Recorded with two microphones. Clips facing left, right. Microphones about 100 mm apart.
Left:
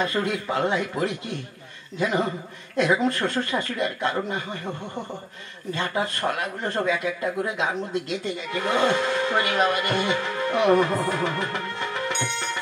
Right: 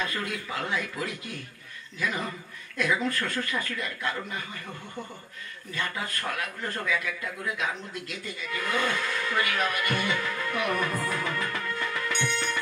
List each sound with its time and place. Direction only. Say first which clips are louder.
0.0 s speech: left 7 dB; 25° left (ahead or behind)
5.7 s speech: left 7 dB; 25° left (ahead or behind)